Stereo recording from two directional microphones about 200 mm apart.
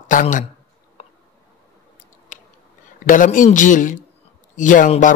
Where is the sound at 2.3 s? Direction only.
40° left (ahead or behind).